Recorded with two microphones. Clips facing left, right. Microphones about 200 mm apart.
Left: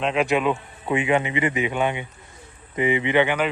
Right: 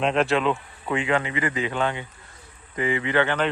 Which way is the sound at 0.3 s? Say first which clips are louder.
Left 1 dB; 15° left (ahead or behind).